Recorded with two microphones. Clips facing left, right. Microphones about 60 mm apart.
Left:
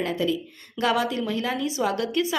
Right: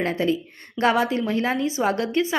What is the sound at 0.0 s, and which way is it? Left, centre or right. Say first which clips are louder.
A woman's voice: right 2 dB; right.